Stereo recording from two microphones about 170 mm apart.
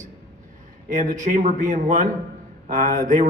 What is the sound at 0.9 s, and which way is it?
A man's voice, 45° right (ahead or behind).